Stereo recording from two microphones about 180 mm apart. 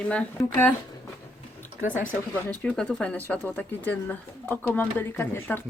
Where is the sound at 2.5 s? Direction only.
5° left (ahead or behind).